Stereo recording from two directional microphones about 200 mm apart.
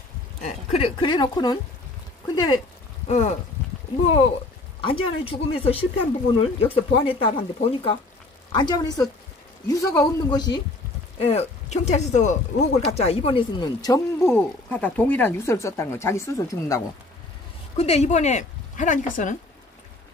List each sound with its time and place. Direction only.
0.4 s speech: 30° left (ahead or behind)
4.8 s speech: 25° left (ahead or behind)
11.1 s speech: 30° left (ahead or behind)
17.7 s speech: 30° left (ahead or behind)